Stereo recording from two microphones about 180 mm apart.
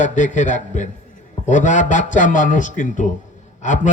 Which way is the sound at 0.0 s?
45° left (ahead or behind).